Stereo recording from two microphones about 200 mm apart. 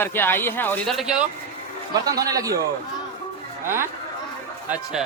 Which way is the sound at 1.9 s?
20° right (ahead or behind).